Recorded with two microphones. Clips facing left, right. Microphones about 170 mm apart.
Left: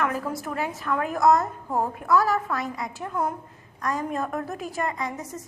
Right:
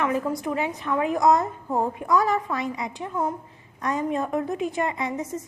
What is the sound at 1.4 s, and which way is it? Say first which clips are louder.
Speech: right 1 dB; 15° right (ahead or behind).